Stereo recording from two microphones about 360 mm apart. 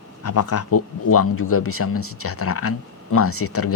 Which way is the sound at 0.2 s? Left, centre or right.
Left.